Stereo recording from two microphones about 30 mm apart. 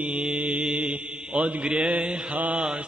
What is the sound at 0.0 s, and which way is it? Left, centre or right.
Mantra, right.